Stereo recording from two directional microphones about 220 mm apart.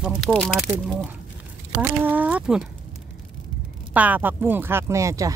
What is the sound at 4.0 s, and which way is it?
Speech, 5° right (ahead or behind).